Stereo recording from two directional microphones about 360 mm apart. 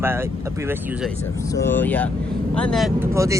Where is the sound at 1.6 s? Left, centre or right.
Centre.